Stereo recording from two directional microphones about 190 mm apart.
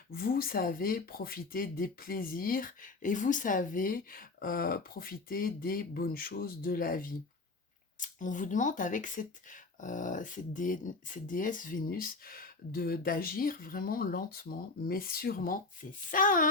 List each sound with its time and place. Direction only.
0.1 s speech: 50° left (ahead or behind)